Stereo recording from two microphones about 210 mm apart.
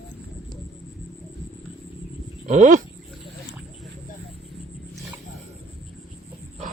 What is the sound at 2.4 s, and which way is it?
Dog, 35° right (ahead or behind).